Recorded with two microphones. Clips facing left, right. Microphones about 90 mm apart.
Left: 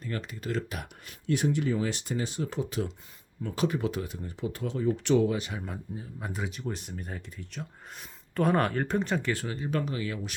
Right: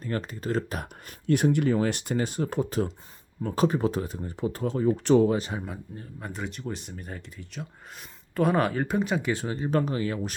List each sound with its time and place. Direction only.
0.0 s speech: 40° right (ahead or behind)
5.6 s speech: centre (ahead or behind)
9.3 s speech: 20° right (ahead or behind)
9.6 s speech: 35° right (ahead or behind)